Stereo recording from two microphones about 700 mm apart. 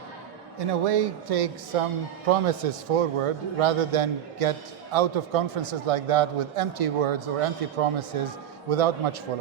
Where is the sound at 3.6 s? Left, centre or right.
Right.